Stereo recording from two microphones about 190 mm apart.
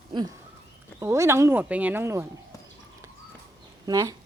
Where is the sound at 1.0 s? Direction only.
15° right (ahead or behind).